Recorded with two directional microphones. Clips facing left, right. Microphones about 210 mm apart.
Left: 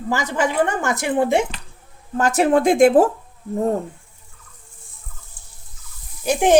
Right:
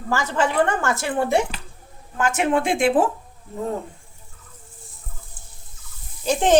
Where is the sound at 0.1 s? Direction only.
15° left (ahead or behind).